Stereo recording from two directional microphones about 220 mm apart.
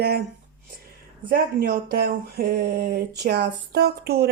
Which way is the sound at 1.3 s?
45° right (ahead or behind).